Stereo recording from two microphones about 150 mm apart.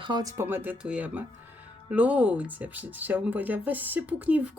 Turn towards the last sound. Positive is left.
turn(degrees=-10)  # may be behind; listen again after turning